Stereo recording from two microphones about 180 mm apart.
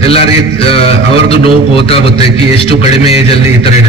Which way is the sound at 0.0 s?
30° left (ahead or behind).